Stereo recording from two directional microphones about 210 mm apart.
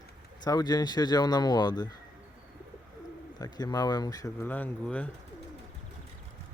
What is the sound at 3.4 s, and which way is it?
Speech, 20° left (ahead or behind).